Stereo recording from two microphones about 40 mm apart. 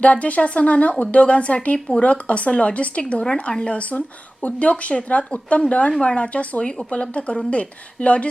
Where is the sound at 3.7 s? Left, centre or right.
Left.